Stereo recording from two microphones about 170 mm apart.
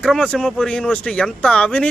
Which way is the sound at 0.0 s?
5° left (ahead or behind).